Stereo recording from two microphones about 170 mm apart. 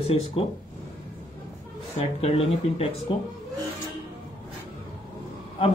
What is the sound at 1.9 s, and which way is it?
Speech, 35° left (ahead or behind).